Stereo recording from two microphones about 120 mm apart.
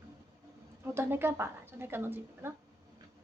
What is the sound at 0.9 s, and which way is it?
A woman's voice, 20° right (ahead or behind).